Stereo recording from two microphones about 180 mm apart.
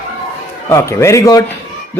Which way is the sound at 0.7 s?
15° left (ahead or behind).